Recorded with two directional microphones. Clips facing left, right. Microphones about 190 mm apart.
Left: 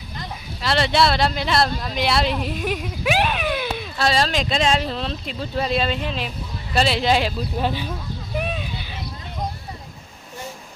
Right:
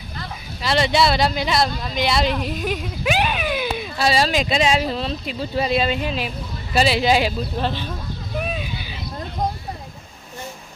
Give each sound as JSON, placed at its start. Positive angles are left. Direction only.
{"t": 0.6, "sound": "speech", "side_deg": 0}
{"t": 7.6, "sound": "speech", "side_deg": 10}
{"t": 8.4, "sound": "a sound", "side_deg": -5}